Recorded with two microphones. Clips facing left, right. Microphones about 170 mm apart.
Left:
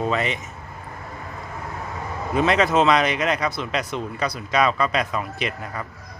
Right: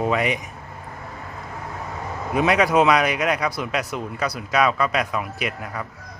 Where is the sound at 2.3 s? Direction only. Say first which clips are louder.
Right 1 dB; 10° right (ahead or behind).